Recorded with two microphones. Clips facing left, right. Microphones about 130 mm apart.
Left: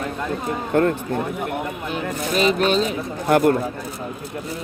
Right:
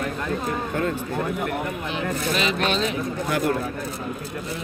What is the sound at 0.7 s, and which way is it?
Speech, 55° left (ahead or behind).